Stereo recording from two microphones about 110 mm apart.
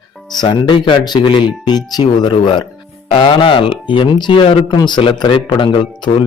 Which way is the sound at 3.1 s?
55° left (ahead or behind).